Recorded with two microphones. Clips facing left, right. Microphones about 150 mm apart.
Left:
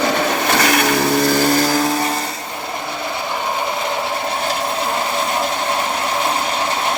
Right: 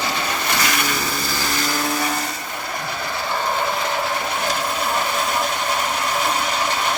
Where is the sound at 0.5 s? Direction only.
65° left (ahead or behind).